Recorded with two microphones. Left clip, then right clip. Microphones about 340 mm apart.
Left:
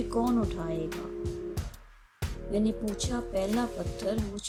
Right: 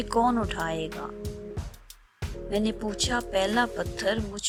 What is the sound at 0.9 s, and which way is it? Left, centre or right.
Music, centre.